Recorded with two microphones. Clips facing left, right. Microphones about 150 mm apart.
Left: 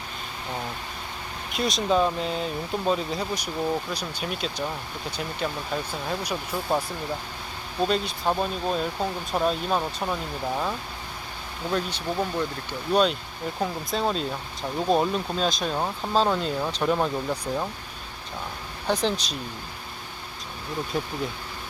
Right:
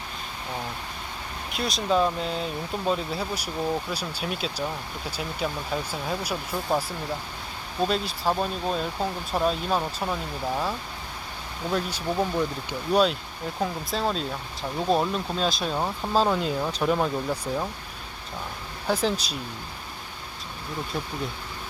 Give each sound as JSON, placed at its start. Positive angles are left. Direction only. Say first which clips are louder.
{"t": 1.5, "sound": "speech", "louder": "left 1 dB", "side_deg": 0}
{"t": 11.7, "sound": "speech", "louder": "even", "side_deg": -10}
{"t": 18.9, "sound": "speech", "louder": "even", "side_deg": -5}